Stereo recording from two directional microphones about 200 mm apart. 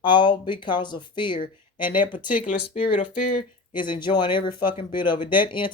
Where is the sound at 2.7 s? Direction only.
30° left (ahead or behind).